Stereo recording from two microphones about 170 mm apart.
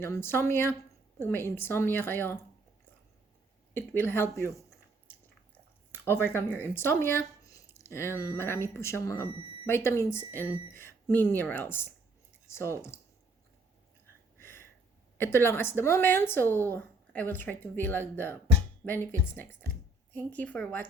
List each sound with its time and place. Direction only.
0.0 s speech: 15° left (ahead or behind)
3.8 s speech: 15° left (ahead or behind)
5.9 s speech: 15° left (ahead or behind)
14.3 s a sound: 15° left (ahead or behind)
15.2 s speech: 15° left (ahead or behind)
20.1 s speech: 10° left (ahead or behind)